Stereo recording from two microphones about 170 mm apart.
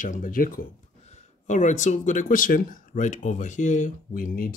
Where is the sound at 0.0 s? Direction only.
50° left (ahead or behind).